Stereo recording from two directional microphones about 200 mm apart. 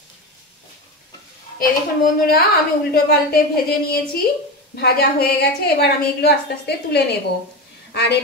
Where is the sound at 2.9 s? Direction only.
50° left (ahead or behind).